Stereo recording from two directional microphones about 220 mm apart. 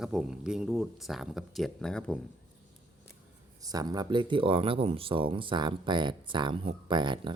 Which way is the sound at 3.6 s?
15° right (ahead or behind).